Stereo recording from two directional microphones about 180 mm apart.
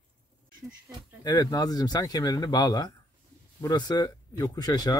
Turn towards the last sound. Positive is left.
turn(degrees=20)  # may be behind; listen again after turning